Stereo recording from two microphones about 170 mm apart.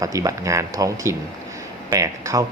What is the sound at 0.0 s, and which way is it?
Speech, 20° right (ahead or behind).